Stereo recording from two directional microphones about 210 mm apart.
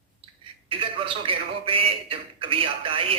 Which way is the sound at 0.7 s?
25° right (ahead or behind).